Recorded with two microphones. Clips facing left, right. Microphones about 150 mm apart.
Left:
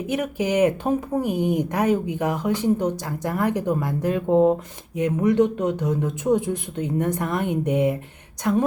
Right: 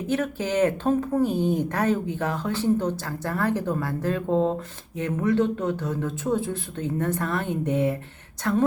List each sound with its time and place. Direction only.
0.1 s speech: 15° left (ahead or behind)